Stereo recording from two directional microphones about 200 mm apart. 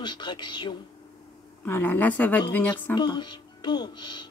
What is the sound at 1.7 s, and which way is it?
Speech, 10° left (ahead or behind).